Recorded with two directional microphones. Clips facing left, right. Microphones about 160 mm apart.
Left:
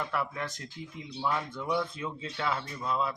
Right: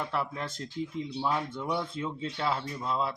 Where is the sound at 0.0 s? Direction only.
25° right (ahead or behind).